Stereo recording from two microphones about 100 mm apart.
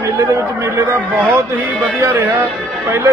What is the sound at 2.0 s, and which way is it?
Speech, 25° right (ahead or behind).